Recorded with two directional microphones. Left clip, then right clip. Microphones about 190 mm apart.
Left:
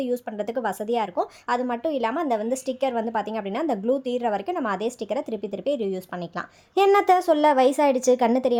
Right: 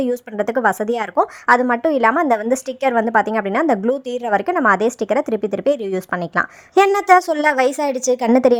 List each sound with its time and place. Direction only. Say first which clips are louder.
0.0 s a woman's voice: right 7 dB; 25° right (ahead or behind)